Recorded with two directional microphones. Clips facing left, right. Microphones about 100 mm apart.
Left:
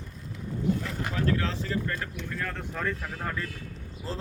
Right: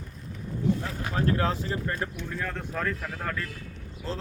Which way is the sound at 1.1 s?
35° right (ahead or behind).